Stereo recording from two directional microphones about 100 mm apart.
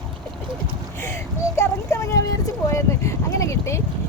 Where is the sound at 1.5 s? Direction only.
25° left (ahead or behind).